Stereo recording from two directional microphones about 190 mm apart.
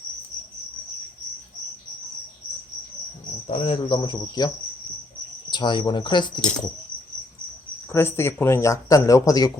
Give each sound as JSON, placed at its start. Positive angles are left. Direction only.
{"t": 3.4, "sound": "cricket", "side_deg": 30}
{"t": 7.9, "sound": "speech", "side_deg": 15}